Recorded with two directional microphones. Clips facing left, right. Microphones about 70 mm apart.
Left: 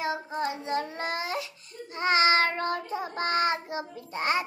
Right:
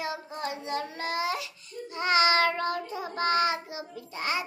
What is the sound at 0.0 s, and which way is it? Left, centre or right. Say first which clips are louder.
Child singing: left 4 dB; left.